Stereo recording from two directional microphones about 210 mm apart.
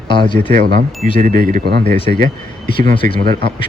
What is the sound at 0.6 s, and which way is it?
Speech, 40° right (ahead or behind).